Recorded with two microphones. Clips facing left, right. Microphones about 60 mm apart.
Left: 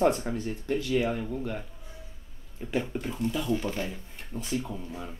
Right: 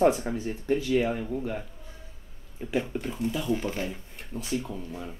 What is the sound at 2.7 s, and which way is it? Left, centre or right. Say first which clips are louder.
Speech: right 1 dB; centre.